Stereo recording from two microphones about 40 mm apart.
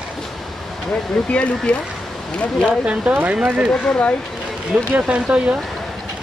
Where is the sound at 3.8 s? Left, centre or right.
Left.